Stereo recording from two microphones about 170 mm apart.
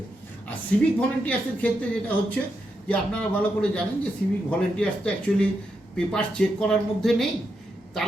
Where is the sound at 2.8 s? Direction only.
5° left (ahead or behind).